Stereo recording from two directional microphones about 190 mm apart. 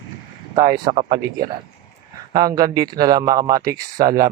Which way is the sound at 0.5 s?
20° right (ahead or behind).